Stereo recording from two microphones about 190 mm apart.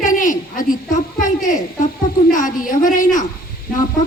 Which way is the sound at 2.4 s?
45° left (ahead or behind).